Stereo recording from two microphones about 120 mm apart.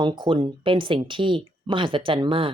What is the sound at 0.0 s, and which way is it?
Speech, 40° right (ahead or behind).